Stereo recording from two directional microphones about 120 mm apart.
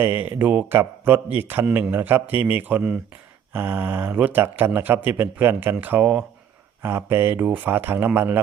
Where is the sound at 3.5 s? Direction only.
20° right (ahead or behind).